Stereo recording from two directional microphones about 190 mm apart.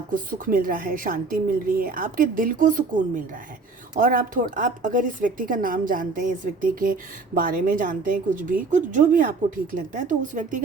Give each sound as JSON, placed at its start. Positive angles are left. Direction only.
{"t": 0.1, "sound": "a woman's voice", "side_deg": -45}